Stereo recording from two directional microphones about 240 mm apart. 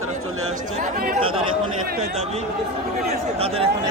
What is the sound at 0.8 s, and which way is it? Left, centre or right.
Speech, right.